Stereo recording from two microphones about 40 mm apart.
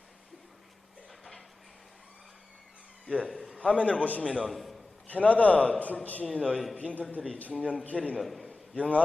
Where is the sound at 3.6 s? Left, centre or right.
Left.